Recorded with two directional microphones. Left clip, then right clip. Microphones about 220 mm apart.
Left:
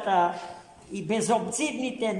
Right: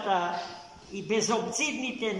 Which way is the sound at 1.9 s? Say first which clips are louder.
Left 3 dB; 45° left (ahead or behind).